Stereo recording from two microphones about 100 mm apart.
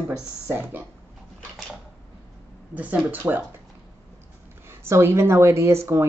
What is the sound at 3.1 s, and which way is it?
Speech, 20° right (ahead or behind).